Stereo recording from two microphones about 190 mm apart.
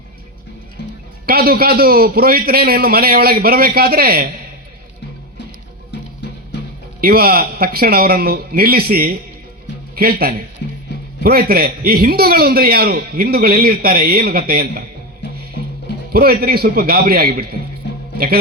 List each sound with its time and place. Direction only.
0.8 s music: 65° left (ahead or behind)
1.3 s a man's voice: 50° right (ahead or behind)
7.0 s a man's voice: 50° right (ahead or behind)
16.1 s a man's voice: 55° right (ahead or behind)